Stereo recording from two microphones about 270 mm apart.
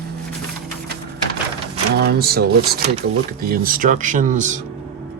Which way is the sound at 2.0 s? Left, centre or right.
Right.